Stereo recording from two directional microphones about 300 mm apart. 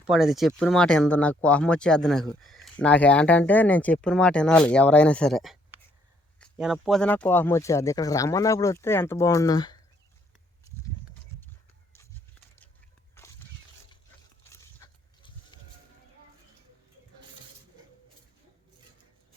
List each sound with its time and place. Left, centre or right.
0.1 s speech: centre
13.2 s a sound: centre
14.5 s dog: centre